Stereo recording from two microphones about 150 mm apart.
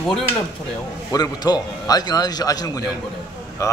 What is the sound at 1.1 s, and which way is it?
A man's voice, 25° left (ahead or behind).